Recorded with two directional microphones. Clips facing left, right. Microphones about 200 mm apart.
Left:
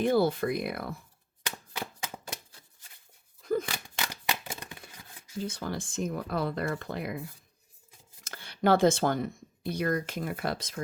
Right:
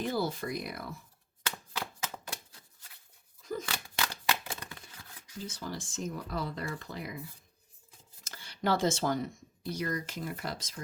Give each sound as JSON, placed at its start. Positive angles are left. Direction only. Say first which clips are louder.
{"t": 0.0, "sound": "speech", "louder": "left 8 dB", "side_deg": 55}
{"t": 1.5, "sound": "a sound", "louder": "left 1 dB", "side_deg": 15}
{"t": 3.4, "sound": "scissors", "louder": "left 8 dB", "side_deg": 60}
{"t": 4.3, "sound": "a sound", "louder": "even", "side_deg": 20}
{"t": 5.4, "sound": "speech", "louder": "left 6 dB", "side_deg": 60}
{"t": 8.2, "sound": "speech", "louder": "left 6 dB", "side_deg": 60}